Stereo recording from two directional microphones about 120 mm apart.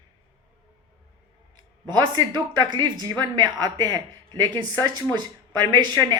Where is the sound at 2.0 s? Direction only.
35° right (ahead or behind).